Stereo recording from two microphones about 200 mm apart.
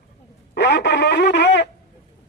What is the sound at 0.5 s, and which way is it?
Speech, 55° left (ahead or behind).